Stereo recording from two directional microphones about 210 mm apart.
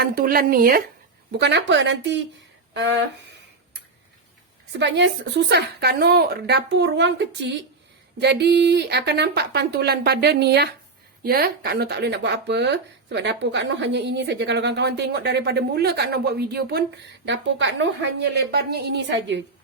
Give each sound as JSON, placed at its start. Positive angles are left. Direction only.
{"t": 0.0, "sound": "a woman's voice", "side_deg": -45}
{"t": 1.3, "sound": "speech", "side_deg": -55}
{"t": 4.7, "sound": "a woman's voice", "side_deg": -55}